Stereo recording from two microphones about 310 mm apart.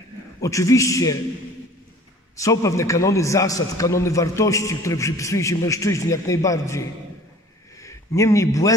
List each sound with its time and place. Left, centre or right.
0.4 s a man's voice: centre
2.3 s a man's voice: centre